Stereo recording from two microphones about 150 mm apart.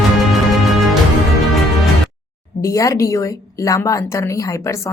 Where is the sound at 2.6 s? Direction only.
20° left (ahead or behind).